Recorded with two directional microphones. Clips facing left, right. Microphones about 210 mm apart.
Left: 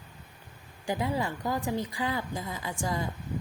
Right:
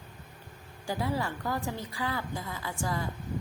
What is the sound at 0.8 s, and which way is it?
Speech, 20° left (ahead or behind).